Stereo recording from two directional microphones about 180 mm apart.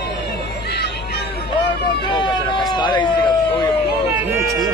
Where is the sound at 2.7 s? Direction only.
25° left (ahead or behind).